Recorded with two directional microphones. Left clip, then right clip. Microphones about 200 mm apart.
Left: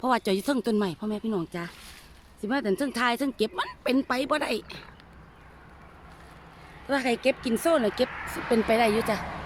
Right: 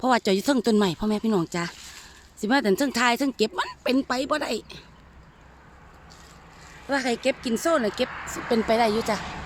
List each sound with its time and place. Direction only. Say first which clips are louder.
0.0 s a woman's voice: right 4 dB; 25° right (ahead or behind)
6.8 s speech: right 1 dB; 10° right (ahead or behind)